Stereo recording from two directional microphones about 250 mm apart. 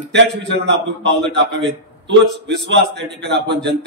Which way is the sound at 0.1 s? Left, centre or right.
Right.